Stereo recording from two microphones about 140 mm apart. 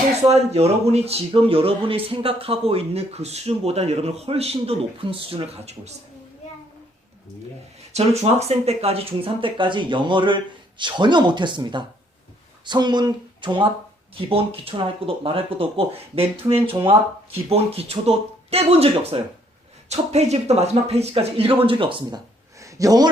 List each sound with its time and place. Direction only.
0.3 s speech: 50° right (ahead or behind)
7.9 s speech: 50° right (ahead or behind)
22.6 s a sound: 25° right (ahead or behind)